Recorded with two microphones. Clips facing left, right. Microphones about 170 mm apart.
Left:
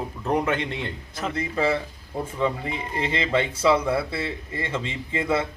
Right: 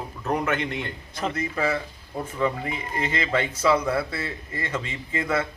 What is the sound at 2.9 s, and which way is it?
Speech, 25° left (ahead or behind).